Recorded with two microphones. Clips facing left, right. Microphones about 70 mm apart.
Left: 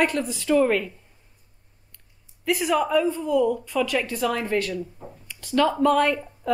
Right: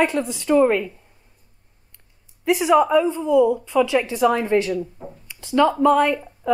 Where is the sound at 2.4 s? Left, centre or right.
Centre.